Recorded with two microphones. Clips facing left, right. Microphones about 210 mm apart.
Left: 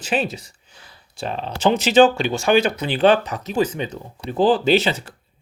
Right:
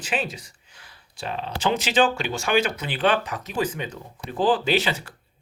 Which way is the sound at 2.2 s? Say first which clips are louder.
Left 5 dB; 30° left (ahead or behind).